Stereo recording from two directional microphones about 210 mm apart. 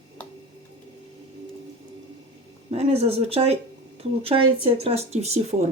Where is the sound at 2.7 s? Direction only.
30° right (ahead or behind).